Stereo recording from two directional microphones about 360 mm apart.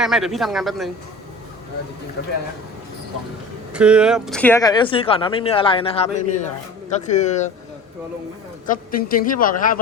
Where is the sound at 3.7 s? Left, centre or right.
Centre.